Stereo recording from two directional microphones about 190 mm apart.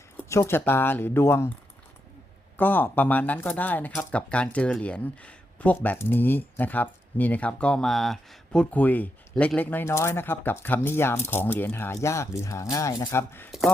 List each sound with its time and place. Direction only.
0.2 s speech: 15° left (ahead or behind)
2.6 s speech: 10° left (ahead or behind)